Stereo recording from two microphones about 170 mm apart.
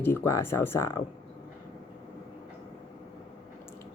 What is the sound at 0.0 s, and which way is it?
Speech, 15° left (ahead or behind).